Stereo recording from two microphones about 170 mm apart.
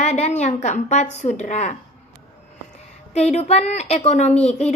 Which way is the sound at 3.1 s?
40° left (ahead or behind).